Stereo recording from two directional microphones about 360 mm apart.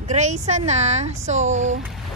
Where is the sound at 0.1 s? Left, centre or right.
Centre.